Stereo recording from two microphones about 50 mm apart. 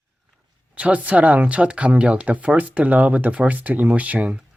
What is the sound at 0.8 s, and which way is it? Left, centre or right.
Speech, right.